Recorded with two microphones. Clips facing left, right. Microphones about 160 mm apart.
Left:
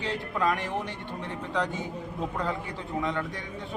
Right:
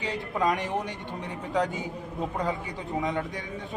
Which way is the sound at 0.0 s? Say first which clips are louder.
Right 1 dB; 20° right (ahead or behind).